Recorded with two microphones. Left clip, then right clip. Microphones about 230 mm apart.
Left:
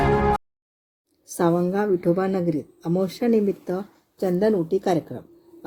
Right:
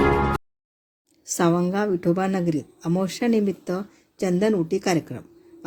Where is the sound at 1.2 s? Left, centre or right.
Right.